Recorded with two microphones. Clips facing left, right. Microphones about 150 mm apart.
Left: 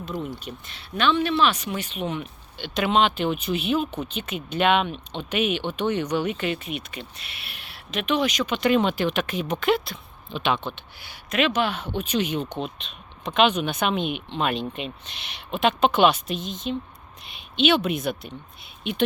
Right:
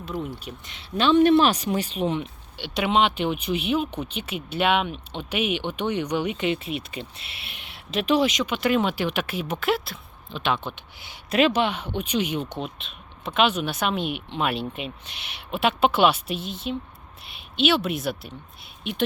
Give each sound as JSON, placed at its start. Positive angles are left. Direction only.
{"t": 0.5, "sound": "speech", "side_deg": -5}
{"t": 0.8, "sound": "speech", "side_deg": -30}
{"t": 1.2, "sound": "speech", "side_deg": -45}
{"t": 2.7, "sound": "speech", "side_deg": -10}
{"t": 6.5, "sound": "speech", "side_deg": -30}
{"t": 8.4, "sound": "speech", "side_deg": -5}
{"t": 11.0, "sound": "speech", "side_deg": -20}
{"t": 11.3, "sound": "speech", "side_deg": -35}
{"t": 11.6, "sound": "speech", "side_deg": -15}